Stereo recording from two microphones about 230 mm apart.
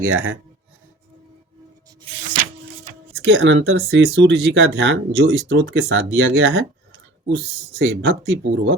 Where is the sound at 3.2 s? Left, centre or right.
Right.